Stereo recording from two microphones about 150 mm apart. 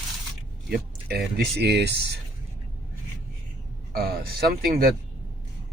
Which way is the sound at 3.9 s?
90° right.